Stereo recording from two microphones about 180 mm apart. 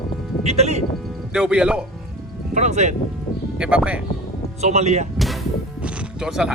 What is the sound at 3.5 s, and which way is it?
Speech, 5° right (ahead or behind).